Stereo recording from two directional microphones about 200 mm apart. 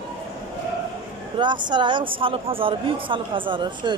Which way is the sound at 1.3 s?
25° right (ahead or behind).